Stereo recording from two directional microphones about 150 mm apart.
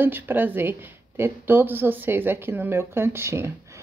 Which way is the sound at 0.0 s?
15° right (ahead or behind).